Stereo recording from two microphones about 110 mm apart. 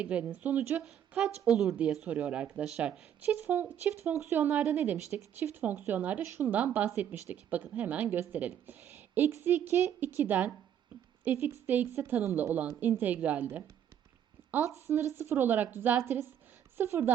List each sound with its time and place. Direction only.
0.0 s speech: 10° right (ahead or behind)
3.3 s speech: 15° right (ahead or behind)
4.5 s speech: 10° right (ahead or behind)
14.7 s speech: 25° right (ahead or behind)